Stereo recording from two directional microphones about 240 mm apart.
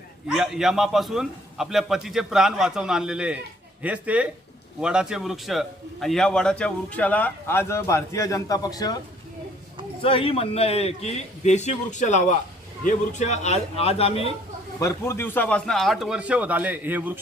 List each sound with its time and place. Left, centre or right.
0.3 s a man's voice: centre
10.0 s a man's voice: left
14.8 s a man's voice: centre